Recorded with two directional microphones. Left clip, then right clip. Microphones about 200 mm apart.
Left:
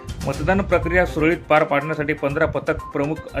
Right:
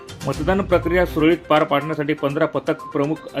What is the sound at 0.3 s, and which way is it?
Speech, 5° left (ahead or behind).